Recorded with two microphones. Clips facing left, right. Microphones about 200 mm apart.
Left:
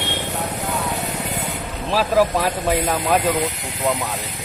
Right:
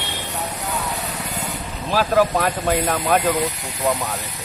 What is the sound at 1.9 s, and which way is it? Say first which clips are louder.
Speech: even; centre (ahead or behind).